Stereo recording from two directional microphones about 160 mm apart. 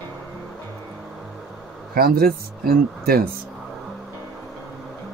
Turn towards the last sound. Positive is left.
turn(degrees=-70)  # may be behind; listen again after turning